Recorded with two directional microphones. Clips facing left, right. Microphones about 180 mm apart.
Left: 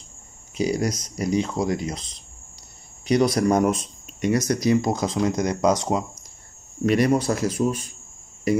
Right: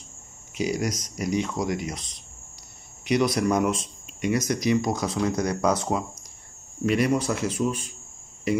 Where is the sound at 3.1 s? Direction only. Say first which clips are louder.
Left 3 dB; 35° left (ahead or behind).